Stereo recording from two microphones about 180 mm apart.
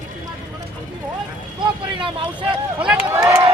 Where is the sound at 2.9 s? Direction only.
5° right (ahead or behind).